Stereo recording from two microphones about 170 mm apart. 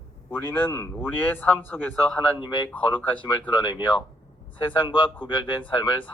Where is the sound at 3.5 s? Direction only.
30° left (ahead or behind).